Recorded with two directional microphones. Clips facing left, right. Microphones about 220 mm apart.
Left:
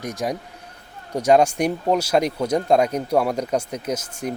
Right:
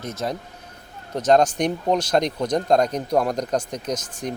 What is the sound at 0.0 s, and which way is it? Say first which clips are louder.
Speech: left 2 dB; 15° left (ahead or behind).